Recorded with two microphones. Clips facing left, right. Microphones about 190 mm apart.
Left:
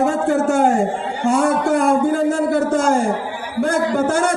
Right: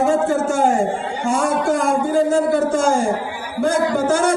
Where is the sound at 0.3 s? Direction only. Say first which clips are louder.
Left 2 dB; 60° left (ahead or behind).